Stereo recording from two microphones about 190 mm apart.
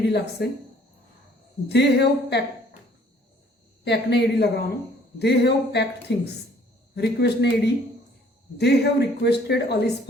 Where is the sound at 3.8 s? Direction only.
60° left (ahead or behind).